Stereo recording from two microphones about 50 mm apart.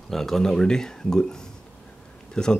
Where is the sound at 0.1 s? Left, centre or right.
Centre.